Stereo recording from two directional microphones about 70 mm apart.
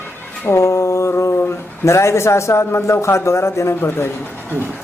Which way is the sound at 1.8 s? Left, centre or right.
Left.